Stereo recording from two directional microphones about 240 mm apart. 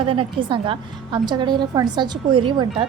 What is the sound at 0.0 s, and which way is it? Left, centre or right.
A woman's voice, right.